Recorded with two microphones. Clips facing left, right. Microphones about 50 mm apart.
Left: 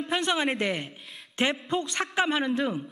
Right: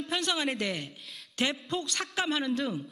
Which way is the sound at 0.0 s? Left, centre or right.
Left.